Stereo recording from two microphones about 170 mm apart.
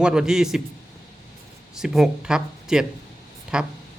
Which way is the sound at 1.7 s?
Centre (ahead or behind).